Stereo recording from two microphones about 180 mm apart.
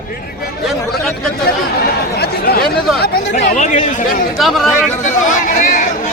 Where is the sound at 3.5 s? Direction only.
45° left (ahead or behind).